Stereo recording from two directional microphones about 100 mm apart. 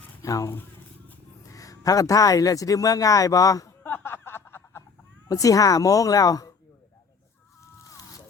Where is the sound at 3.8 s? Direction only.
20° left (ahead or behind).